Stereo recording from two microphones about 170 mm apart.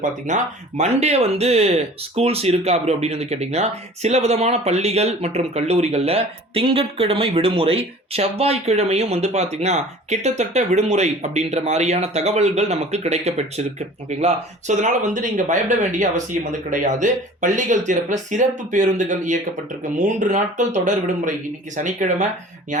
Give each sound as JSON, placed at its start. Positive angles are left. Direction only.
{"t": 0.0, "sound": "speech", "side_deg": -45}